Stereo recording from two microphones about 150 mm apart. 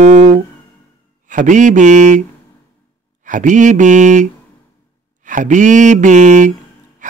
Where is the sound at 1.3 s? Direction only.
60° right (ahead or behind).